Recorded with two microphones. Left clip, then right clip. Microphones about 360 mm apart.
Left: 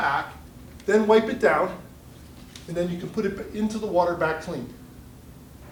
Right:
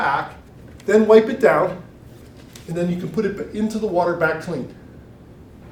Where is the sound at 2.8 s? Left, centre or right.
Left.